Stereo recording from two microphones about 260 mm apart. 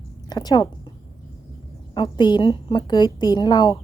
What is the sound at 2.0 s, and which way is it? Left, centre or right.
A woman's voice, centre.